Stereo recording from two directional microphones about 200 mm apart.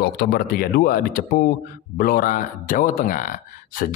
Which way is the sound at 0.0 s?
50° left (ahead or behind).